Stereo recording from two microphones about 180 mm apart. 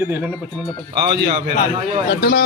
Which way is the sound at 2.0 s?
60° left (ahead or behind).